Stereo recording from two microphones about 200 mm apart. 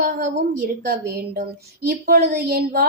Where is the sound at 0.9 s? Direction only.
50° right (ahead or behind).